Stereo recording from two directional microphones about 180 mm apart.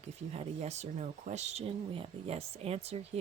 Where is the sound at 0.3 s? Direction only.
40° right (ahead or behind).